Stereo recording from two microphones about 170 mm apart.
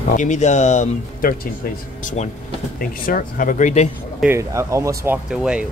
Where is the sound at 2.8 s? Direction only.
55° left (ahead or behind).